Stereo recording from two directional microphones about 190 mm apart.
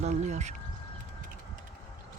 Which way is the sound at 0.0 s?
40° right (ahead or behind).